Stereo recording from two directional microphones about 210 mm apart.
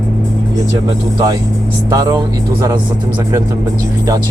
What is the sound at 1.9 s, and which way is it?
Speech, 20° right (ahead or behind).